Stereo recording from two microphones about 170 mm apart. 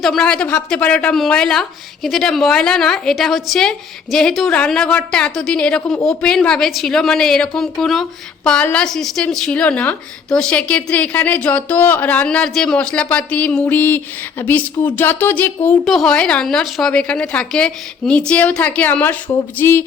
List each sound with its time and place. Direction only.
0.0 s a woman's voice: 5° left (ahead or behind)